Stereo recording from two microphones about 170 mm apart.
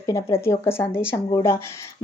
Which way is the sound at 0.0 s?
20° left (ahead or behind).